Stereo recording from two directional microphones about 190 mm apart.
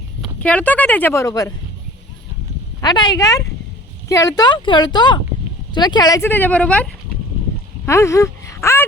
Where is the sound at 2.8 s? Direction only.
20° left (ahead or behind).